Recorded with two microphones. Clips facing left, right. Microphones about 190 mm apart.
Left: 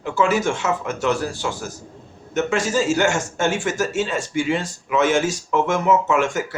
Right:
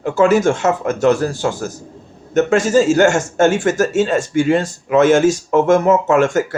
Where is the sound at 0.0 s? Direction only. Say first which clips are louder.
Right 7 dB; 45° right (ahead or behind).